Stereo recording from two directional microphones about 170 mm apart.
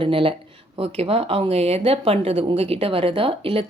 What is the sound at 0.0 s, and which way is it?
Speech, 30° right (ahead or behind).